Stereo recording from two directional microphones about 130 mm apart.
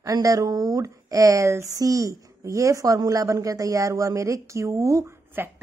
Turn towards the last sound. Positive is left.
turn(degrees=-20)  # may be behind; listen again after turning